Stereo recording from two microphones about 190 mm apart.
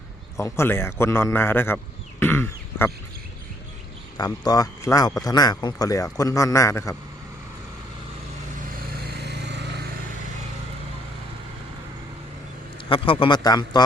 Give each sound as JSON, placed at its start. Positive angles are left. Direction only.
{"t": 0.3, "sound": "a man's voice", "side_deg": 15}
{"t": 4.2, "sound": "speech", "side_deg": 20}
{"t": 9.1, "sound": "vehicle", "side_deg": -65}
{"t": 12.9, "sound": "speech", "side_deg": 25}